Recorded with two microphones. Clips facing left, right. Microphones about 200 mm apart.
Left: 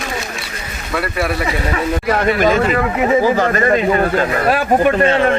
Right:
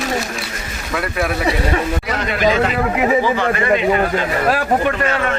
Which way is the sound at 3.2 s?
40° left (ahead or behind).